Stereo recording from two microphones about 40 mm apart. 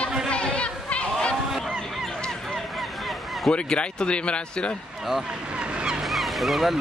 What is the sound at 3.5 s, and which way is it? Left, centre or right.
Speech, left.